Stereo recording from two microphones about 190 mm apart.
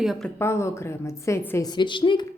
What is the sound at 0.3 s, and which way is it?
A woman's voice, 15° left (ahead or behind).